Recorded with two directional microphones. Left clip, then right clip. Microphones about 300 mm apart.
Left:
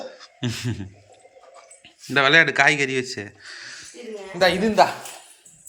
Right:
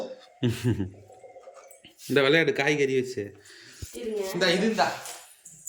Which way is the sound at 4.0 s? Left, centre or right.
Right.